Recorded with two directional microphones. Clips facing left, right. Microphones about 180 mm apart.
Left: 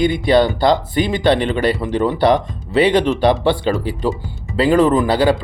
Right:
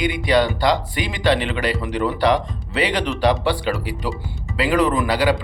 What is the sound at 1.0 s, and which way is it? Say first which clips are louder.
Speech: left 5 dB; 40° left (ahead or behind).